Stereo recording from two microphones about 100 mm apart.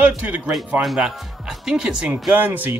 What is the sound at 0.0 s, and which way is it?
Speech, 15° right (ahead or behind).